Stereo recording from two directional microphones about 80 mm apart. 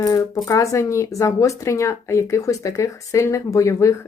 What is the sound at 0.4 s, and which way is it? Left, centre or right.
Speech, left.